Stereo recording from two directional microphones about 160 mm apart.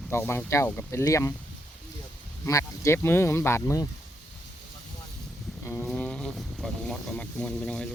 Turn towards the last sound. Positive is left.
turn(degrees=5)  # may be behind; listen again after turning